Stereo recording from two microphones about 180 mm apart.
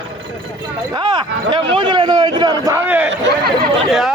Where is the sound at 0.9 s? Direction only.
25° right (ahead or behind).